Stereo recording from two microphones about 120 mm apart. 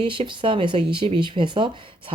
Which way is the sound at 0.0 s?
45° right (ahead or behind).